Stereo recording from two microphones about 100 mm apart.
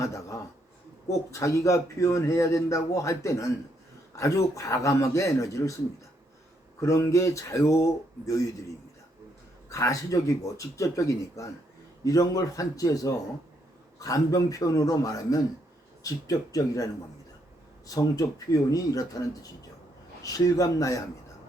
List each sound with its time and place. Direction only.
0.0 s a man's voice: 30° left (ahead or behind)
6.8 s speech: 30° left (ahead or behind)
9.6 s speech: 30° left (ahead or behind)